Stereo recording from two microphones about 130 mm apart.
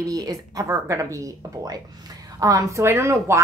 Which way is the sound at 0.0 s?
30° right (ahead or behind).